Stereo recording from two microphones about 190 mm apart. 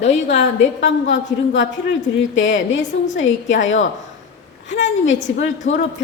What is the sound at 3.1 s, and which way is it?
Speech, 90° left.